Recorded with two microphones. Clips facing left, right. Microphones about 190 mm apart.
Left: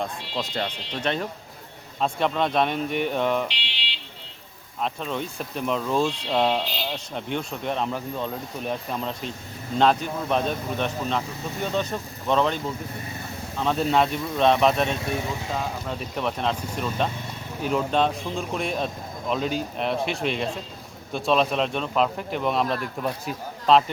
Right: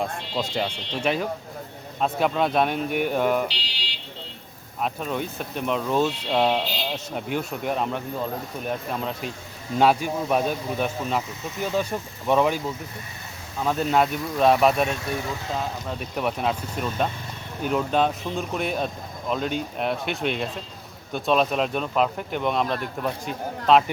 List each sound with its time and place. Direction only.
0.5 s speech: 10° right (ahead or behind)
3.5 s a sound: 40° right (ahead or behind)
4.8 s speech: 5° right (ahead or behind)